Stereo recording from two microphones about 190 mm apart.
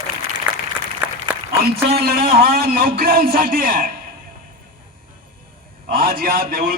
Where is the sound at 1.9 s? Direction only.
55° right (ahead or behind).